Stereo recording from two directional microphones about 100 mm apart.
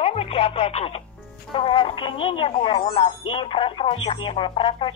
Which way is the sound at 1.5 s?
60° left (ahead or behind).